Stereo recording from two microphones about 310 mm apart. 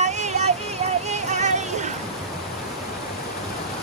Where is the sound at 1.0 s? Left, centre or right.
Right.